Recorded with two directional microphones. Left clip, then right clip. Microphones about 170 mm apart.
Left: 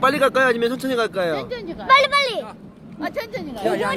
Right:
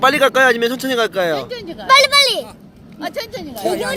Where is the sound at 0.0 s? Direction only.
30° right (ahead or behind).